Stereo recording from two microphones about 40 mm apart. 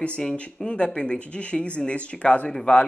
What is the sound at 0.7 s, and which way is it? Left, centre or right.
Speech, left.